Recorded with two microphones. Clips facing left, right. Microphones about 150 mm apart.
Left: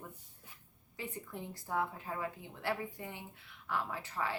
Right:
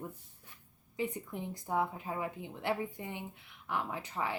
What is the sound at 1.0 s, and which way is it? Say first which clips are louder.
A woman's voice: right 6 dB; 20° right (ahead or behind).